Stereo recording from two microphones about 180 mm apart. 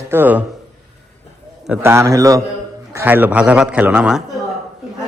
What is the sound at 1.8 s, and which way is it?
A man's voice, 15° right (ahead or behind).